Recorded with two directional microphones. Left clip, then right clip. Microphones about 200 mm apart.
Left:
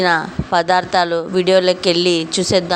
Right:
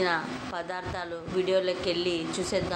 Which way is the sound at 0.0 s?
55° left (ahead or behind).